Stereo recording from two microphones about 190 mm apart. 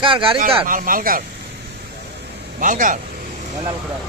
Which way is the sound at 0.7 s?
45° right (ahead or behind).